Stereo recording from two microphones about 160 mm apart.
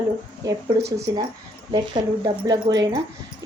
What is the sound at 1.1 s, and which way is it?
A woman's voice, 25° right (ahead or behind).